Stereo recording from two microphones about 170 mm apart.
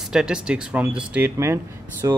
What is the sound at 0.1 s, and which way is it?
Speech, 5° right (ahead or behind).